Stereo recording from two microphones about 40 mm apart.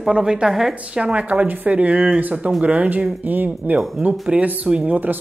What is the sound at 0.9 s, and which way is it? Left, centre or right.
Speech, right.